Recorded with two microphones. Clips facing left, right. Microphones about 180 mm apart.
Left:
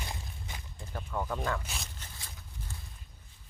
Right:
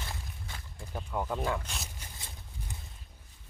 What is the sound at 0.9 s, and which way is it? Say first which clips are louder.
Speech: right 1 dB; 10° right (ahead or behind).